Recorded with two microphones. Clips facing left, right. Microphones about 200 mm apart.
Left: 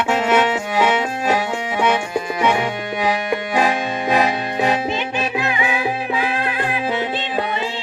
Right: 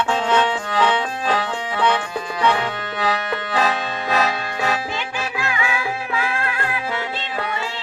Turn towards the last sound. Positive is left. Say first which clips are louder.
# left 5 dB
turn(degrees=15)  # may be behind; listen again after turning